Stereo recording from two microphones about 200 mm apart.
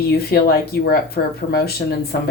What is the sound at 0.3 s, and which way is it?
Speech, 50° left (ahead or behind).